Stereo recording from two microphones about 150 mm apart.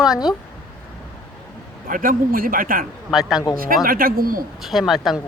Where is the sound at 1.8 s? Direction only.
70° right (ahead or behind).